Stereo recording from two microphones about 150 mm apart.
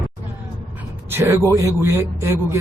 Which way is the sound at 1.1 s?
20° right (ahead or behind).